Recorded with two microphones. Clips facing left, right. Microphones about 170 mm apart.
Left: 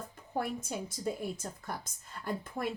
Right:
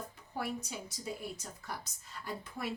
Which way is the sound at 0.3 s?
50° left (ahead or behind).